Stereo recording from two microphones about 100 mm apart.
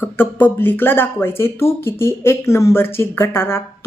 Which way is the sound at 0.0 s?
20° left (ahead or behind).